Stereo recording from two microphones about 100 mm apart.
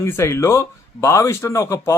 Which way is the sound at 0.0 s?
25° left (ahead or behind).